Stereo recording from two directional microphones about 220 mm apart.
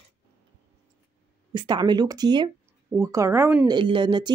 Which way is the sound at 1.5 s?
20° right (ahead or behind).